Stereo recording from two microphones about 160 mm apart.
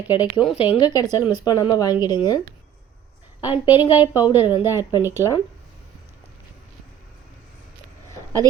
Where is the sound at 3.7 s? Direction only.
15° right (ahead or behind).